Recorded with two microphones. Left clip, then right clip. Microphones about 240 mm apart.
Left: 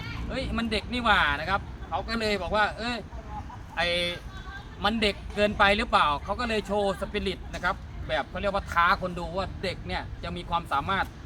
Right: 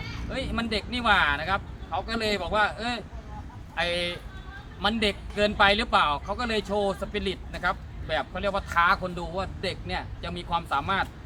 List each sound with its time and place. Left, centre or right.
0.0 s speech: centre